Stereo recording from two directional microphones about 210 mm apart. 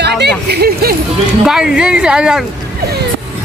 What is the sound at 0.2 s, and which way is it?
Music, 50° right (ahead or behind).